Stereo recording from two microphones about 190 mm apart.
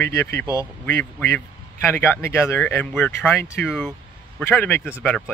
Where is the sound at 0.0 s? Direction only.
15° left (ahead or behind).